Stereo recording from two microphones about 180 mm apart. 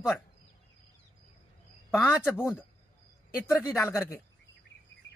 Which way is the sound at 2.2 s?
10° left (ahead or behind).